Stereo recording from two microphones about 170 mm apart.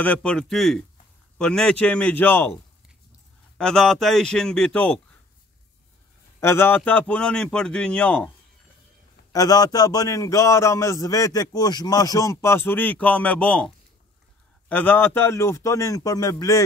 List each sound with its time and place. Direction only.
0.0 s a man's voice: 5° left (ahead or behind)
3.5 s a man's voice: 5° left (ahead or behind)
6.4 s a man's voice: 15° left (ahead or behind)
9.3 s a man's voice: 20° left (ahead or behind)